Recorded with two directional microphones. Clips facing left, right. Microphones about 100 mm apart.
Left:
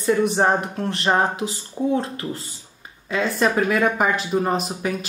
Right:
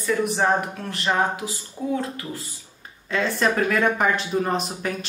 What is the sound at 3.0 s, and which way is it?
Speech, 5° left (ahead or behind).